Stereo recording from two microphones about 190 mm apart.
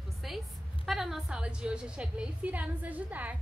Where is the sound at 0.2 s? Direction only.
Centre (ahead or behind).